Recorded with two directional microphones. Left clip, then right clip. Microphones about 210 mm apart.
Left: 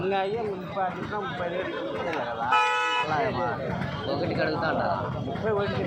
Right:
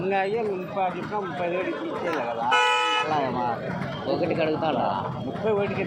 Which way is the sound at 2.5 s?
40° right (ahead or behind).